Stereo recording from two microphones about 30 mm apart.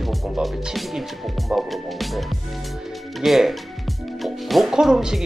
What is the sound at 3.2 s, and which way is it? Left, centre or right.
Speech, centre.